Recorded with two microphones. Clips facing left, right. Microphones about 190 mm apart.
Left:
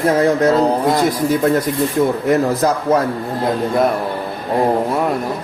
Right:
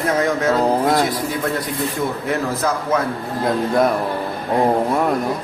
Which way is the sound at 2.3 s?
40° left (ahead or behind).